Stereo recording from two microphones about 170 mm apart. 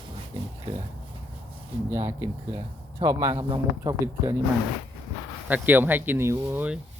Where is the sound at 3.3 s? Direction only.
30° right (ahead or behind).